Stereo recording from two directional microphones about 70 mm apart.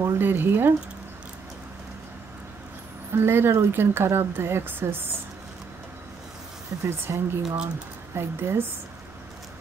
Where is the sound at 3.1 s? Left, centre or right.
Right.